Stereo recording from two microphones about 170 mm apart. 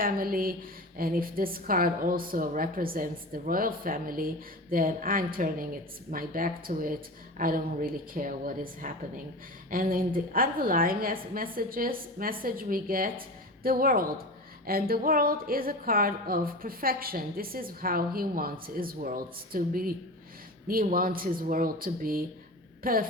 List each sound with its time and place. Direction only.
0.0 s a woman's voice: 60° right (ahead or behind)